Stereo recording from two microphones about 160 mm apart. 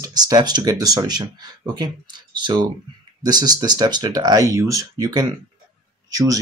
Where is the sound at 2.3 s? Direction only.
30° right (ahead or behind).